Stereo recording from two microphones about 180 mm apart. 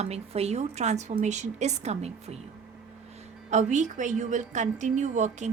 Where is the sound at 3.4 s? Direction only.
40° right (ahead or behind).